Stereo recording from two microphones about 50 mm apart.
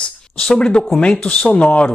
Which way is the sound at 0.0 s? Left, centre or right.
Centre.